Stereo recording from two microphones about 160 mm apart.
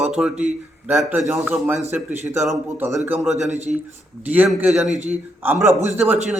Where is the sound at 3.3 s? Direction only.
45° right (ahead or behind).